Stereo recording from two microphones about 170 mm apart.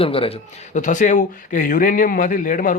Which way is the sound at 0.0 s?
35° left (ahead or behind).